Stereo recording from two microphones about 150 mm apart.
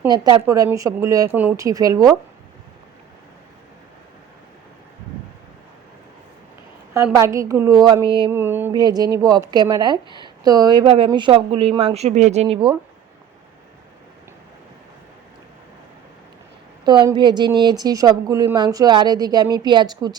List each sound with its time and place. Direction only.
0.4 s a woman's voice: 20° right (ahead or behind)
1.3 s mantra: 10° right (ahead or behind)
1.5 s a woman's voice: 20° right (ahead or behind)
6.9 s a woman's voice: 20° right (ahead or behind)
8.3 s mantra: 15° right (ahead or behind)
8.7 s a woman's voice: 25° right (ahead or behind)
16.8 s a woman's voice: 30° right (ahead or behind)